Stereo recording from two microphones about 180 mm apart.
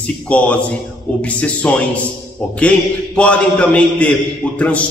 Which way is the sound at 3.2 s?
5° left (ahead or behind).